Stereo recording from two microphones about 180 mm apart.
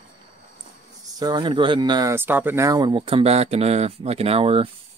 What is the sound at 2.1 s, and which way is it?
Speech, 10° right (ahead or behind).